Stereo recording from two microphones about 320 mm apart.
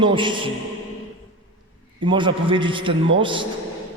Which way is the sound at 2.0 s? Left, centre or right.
Centre.